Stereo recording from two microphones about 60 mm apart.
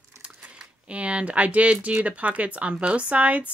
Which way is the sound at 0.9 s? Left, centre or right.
Right.